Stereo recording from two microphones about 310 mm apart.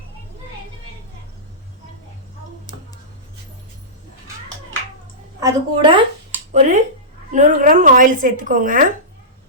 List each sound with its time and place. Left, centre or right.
5.4 s a woman's voice: centre